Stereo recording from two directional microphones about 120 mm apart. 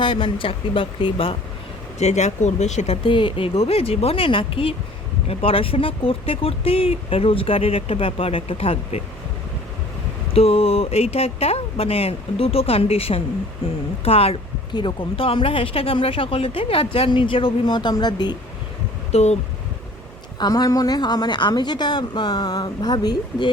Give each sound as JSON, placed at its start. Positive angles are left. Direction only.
{"t": 0.0, "sound": "speech", "side_deg": 40}
{"t": 2.0, "sound": "speech", "side_deg": 70}
{"t": 10.3, "sound": "speech", "side_deg": 55}
{"t": 14.7, "sound": "speech", "side_deg": 40}
{"t": 19.1, "sound": "speech", "side_deg": 65}
{"t": 20.4, "sound": "speech", "side_deg": 30}